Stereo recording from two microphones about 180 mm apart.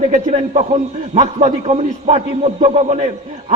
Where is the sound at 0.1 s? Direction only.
40° right (ahead or behind).